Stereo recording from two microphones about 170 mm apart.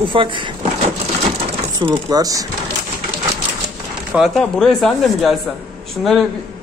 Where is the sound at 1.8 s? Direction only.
25° right (ahead or behind).